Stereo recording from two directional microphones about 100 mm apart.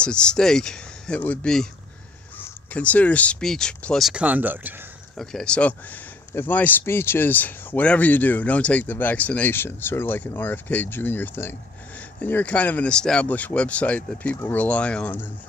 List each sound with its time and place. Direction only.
0.0 s speech: 10° left (ahead or behind)
4.1 s speech: 15° right (ahead or behind)
5.1 s speech: 5° left (ahead or behind)